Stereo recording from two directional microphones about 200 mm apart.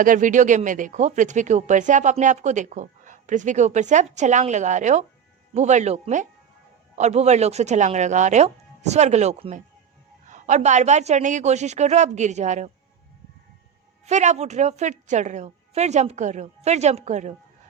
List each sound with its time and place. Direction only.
0.0 s speech: 40° right (ahead or behind)
14.0 s speech: 35° right (ahead or behind)